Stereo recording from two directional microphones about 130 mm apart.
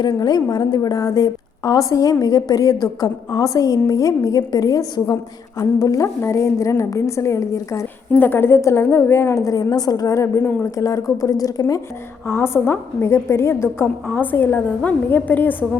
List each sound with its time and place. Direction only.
0.0 s a woman's voice: 30° left (ahead or behind); by 15.8 s 15° left (ahead or behind)